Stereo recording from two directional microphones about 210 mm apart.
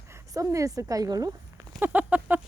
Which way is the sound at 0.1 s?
15° right (ahead or behind).